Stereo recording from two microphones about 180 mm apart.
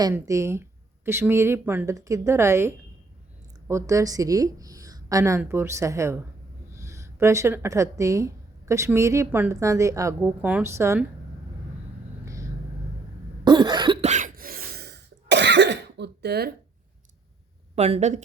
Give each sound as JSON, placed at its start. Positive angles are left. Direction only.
{"t": 0.0, "sound": "a woman's voice", "side_deg": -15}
{"t": 12.2, "sound": "vehicle", "side_deg": -15}
{"t": 13.4, "sound": "cough", "side_deg": -25}
{"t": 14.1, "sound": "cough", "side_deg": -45}
{"t": 17.7, "sound": "a woman's voice", "side_deg": -35}